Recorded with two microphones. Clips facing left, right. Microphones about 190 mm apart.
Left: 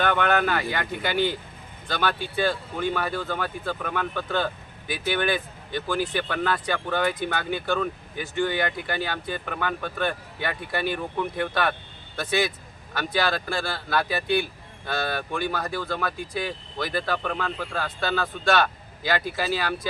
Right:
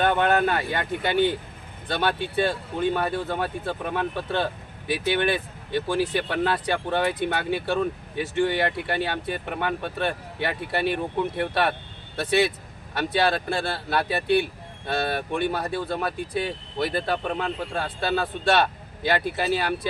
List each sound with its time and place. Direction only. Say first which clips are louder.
0.0 s speech: right 2 dB; 30° right (ahead or behind)
13.0 s speech: right 3 dB; 25° right (ahead or behind)